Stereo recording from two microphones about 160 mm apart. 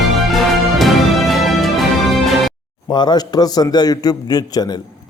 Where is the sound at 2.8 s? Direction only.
25° left (ahead or behind).